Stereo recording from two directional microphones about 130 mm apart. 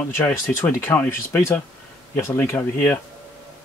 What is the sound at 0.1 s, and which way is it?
Speech, 20° left (ahead or behind).